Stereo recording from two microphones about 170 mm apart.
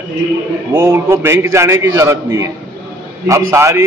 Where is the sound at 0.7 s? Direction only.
15° right (ahead or behind).